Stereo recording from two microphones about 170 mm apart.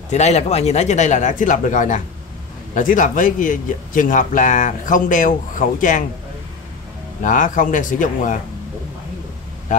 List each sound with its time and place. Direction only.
0.1 s speech: 40° left (ahead or behind)
7.2 s speech: 50° left (ahead or behind)